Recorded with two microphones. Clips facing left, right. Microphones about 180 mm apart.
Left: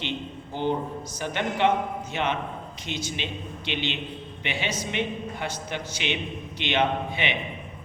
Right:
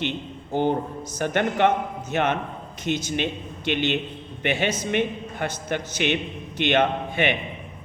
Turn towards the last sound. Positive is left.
turn(degrees=-50)  # may be behind; listen again after turning